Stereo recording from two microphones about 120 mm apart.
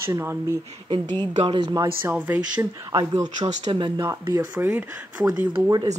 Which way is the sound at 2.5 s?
35° right (ahead or behind).